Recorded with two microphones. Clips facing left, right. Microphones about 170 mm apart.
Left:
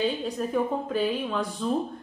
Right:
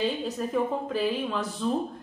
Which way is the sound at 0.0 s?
Centre (ahead or behind).